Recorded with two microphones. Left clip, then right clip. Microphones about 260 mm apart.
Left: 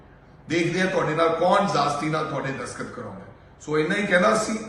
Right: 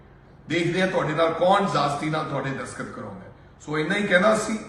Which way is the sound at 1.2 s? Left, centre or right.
Centre.